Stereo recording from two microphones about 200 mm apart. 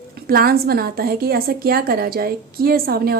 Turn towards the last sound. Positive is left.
turn(degrees=-50)  # may be behind; listen again after turning